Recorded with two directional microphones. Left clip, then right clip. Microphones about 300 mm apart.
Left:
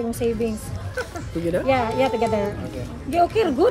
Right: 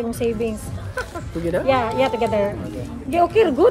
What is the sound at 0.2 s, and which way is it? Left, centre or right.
Speech, right.